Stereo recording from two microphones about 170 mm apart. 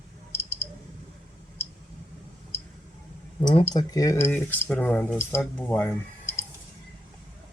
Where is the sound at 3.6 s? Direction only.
20° left (ahead or behind).